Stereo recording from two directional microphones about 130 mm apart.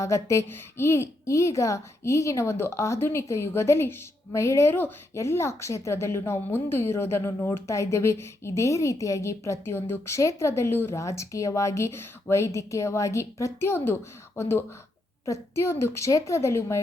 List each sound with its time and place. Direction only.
0.0 s a woman's voice: 20° left (ahead or behind)